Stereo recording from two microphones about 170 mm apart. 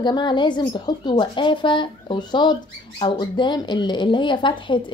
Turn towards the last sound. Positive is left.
turn(degrees=30)  # may be behind; listen again after turning